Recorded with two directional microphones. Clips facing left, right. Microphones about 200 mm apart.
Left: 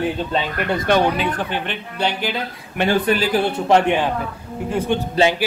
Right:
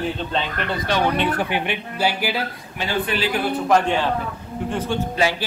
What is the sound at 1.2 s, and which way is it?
Speech, 10° right (ahead or behind).